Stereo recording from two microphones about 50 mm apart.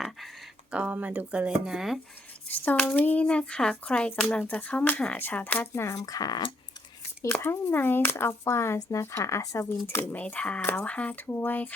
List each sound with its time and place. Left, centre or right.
0.7 s speech: right
1.6 s speech: centre
2.5 s speech: left
3.2 s speech: left
4.4 s speech: left
5.1 s speech: left
5.7 s speech: left
7.4 s speech: left
9.8 s speech: left
10.1 s speech: left
11.3 s speech: left